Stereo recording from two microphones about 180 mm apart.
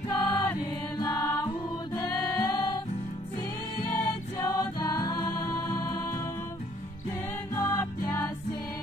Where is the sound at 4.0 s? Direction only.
20° left (ahead or behind).